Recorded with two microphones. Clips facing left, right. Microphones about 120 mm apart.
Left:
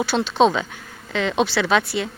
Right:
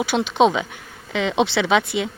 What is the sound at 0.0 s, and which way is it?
Speech, 15° right (ahead or behind).